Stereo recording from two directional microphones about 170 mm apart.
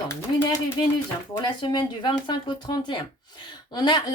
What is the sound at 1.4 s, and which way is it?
A woman's voice, 25° left (ahead or behind).